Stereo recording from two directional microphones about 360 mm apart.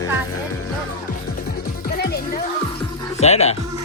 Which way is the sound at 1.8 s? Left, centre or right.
Left.